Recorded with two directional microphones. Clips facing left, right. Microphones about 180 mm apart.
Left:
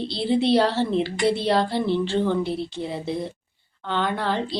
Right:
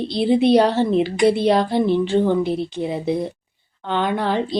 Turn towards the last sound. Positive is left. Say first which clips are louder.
# right 5 dB
turn(degrees=-20)  # may be behind; listen again after turning